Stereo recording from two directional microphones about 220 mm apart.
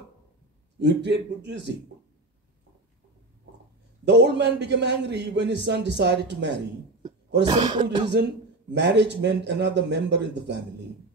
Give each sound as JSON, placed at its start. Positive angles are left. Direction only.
{"t": 0.7, "sound": "a man's voice", "side_deg": -50}
{"t": 4.0, "sound": "a man's voice", "side_deg": -50}
{"t": 7.4, "sound": "speech", "side_deg": -20}
{"t": 8.7, "sound": "a man's voice", "side_deg": -50}